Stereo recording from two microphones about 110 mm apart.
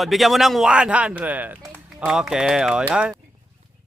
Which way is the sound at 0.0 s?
Centre (ahead or behind).